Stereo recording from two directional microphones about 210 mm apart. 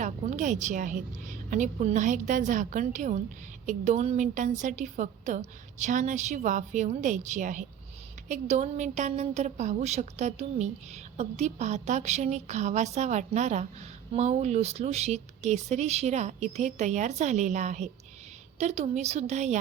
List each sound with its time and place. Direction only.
0.0 s a woman's voice: 35° right (ahead or behind)